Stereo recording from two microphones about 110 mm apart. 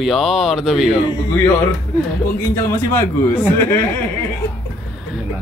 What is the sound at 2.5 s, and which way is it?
A man's voice, 20° left (ahead or behind).